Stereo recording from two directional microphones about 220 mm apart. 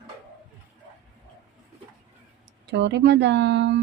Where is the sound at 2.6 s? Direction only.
50° right (ahead or behind).